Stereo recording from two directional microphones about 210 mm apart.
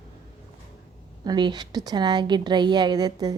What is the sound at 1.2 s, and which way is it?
A woman's voice, 20° right (ahead or behind).